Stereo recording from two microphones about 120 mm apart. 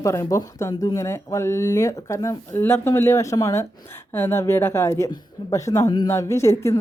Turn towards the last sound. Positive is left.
turn(degrees=25)  # may be behind; listen again after turning